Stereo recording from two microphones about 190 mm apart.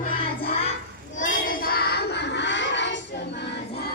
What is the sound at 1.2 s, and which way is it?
Music, 45° left (ahead or behind).